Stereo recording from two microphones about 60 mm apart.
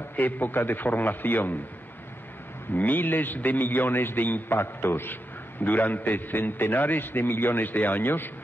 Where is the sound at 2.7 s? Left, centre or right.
Left.